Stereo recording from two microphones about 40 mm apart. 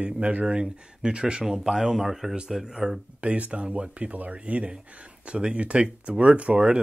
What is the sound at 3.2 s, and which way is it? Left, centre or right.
Speech, right.